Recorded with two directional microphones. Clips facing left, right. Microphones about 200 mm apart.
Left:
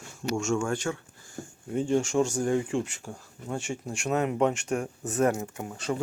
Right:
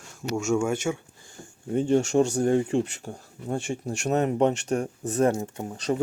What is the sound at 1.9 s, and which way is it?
Speech, 40° right (ahead or behind).